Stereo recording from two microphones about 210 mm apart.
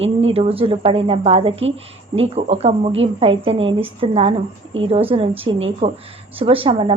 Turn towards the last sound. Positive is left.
turn(degrees=-25)  # may be behind; listen again after turning